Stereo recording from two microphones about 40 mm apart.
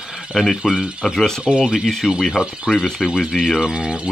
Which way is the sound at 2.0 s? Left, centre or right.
Centre.